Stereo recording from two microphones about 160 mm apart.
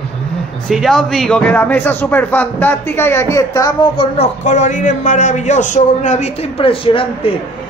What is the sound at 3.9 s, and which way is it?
A man's voice, 40° left (ahead or behind).